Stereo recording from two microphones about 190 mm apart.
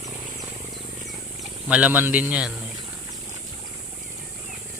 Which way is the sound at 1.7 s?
5° right (ahead or behind).